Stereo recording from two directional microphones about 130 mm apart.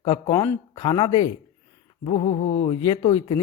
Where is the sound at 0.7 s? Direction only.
35° left (ahead or behind).